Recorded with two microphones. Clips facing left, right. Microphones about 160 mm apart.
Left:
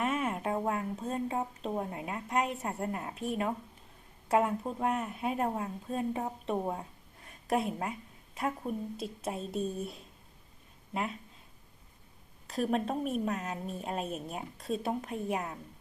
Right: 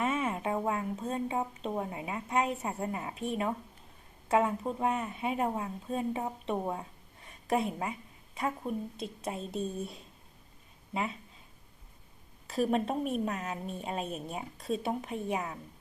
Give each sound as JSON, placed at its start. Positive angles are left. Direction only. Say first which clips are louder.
{"t": 0.0, "sound": "a woman's voice", "louder": "right 1 dB", "side_deg": 0}
{"t": 12.5, "sound": "a woman's voice", "louder": "right 2 dB", "side_deg": 0}